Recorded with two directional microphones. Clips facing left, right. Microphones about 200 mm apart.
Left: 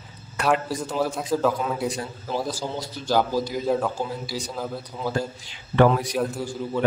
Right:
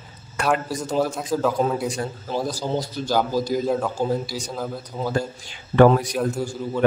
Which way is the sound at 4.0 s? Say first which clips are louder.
Right 5 dB; 45° right (ahead or behind).